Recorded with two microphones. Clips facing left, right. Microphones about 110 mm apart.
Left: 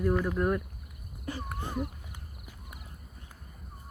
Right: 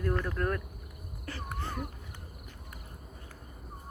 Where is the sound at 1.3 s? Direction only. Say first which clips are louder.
Left 5 dB; 15° left (ahead or behind).